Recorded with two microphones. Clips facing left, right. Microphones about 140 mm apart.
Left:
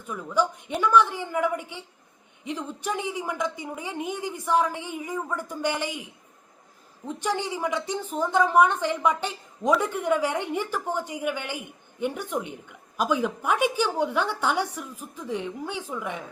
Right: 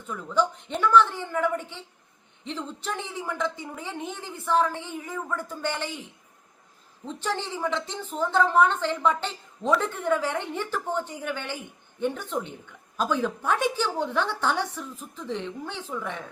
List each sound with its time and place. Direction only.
0.1 s a woman's voice: 10° left (ahead or behind)